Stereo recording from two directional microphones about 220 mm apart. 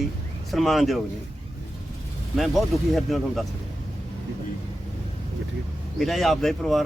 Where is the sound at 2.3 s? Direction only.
Centre (ahead or behind).